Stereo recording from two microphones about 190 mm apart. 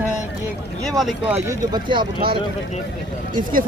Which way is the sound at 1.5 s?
25° right (ahead or behind).